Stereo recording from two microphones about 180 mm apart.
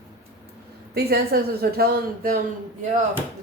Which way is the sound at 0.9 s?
60° right (ahead or behind).